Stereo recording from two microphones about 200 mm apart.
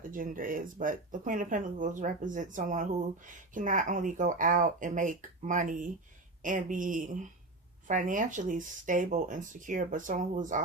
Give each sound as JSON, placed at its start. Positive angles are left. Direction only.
{"t": 0.1, "sound": "speech", "side_deg": -45}